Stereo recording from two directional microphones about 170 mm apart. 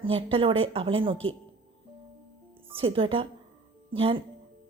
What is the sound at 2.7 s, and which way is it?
A woman's voice, 35° right (ahead or behind).